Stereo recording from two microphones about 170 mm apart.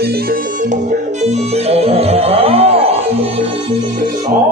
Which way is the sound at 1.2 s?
40° right (ahead or behind).